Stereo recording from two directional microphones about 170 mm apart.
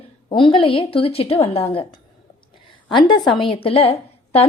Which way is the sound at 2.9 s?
25° left (ahead or behind).